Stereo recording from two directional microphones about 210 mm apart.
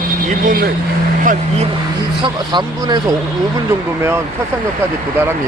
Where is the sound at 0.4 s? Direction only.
45° right (ahead or behind).